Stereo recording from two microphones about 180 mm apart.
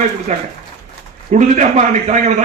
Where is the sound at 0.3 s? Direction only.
45° right (ahead or behind).